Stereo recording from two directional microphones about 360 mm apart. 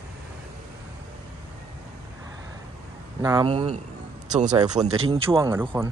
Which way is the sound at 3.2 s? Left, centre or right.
Centre.